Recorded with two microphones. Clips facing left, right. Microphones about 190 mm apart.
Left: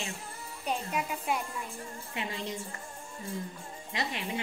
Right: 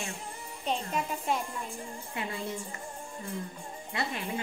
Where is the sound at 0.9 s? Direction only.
5° left (ahead or behind).